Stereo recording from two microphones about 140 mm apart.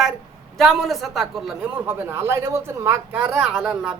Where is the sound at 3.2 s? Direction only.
10° right (ahead or behind).